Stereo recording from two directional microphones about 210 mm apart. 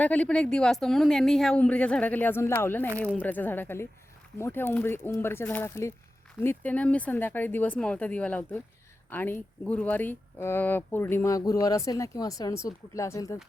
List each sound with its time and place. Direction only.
0.0 s speech: 5° left (ahead or behind)